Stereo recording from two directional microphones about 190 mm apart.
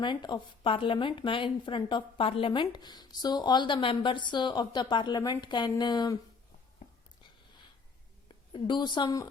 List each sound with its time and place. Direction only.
0.0 s a woman's voice: 25° left (ahead or behind)
8.3 s a woman's voice: 25° left (ahead or behind)